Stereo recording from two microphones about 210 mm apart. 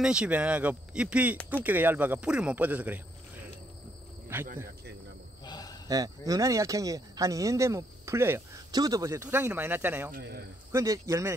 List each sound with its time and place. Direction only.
0.0 s speech: 5° right (ahead or behind)
4.3 s speech: 10° right (ahead or behind)
5.4 s cricket: 20° left (ahead or behind)
5.9 s speech: 15° right (ahead or behind)
10.1 s a man's voice: 50° right (ahead or behind)
10.7 s speech: 15° right (ahead or behind)